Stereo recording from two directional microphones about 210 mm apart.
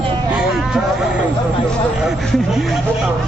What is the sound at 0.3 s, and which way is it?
Vehicle, 5° right (ahead or behind).